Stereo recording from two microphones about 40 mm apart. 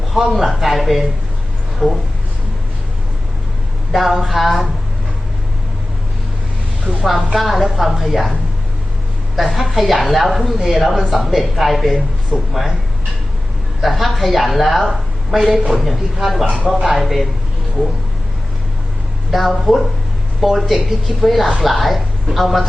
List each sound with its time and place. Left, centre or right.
0.1 s a woman's voice: centre
1.8 s speech: centre
3.9 s a woman's voice: centre
7.0 s a woman's voice: centre
9.3 s a woman's voice: centre
13.8 s a woman's voice: centre
19.3 s a woman's voice: centre